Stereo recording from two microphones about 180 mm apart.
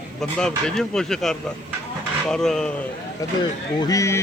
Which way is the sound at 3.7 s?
20° left (ahead or behind).